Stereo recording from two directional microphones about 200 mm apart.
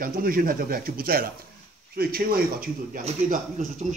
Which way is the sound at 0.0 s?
45° right (ahead or behind).